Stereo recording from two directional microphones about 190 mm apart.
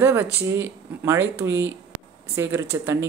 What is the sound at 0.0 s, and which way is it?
Speech, 10° right (ahead or behind).